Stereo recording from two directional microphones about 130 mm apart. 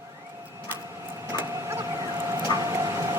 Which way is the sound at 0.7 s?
20° right (ahead or behind).